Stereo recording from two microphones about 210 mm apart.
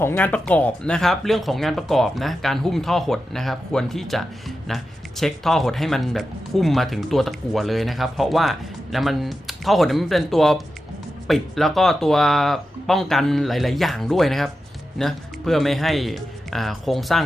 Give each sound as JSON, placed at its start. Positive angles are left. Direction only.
{"t": 0.0, "sound": "speech", "side_deg": 10}